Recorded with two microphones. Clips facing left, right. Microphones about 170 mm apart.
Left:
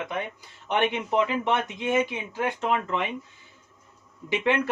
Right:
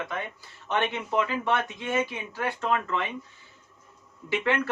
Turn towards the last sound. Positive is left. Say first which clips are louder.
# left 2 dB
turn(degrees=20)  # may be behind; listen again after turning